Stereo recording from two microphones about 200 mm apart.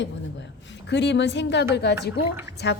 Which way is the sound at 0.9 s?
60° left (ahead or behind).